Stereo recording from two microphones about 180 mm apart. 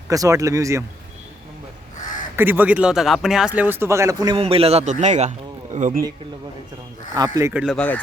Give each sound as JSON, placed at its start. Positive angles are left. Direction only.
{"t": 0.1, "sound": "speech", "side_deg": -20}
{"t": 2.3, "sound": "speech", "side_deg": -10}
{"t": 7.1, "sound": "speech", "side_deg": -20}
{"t": 7.8, "sound": "speech", "side_deg": 10}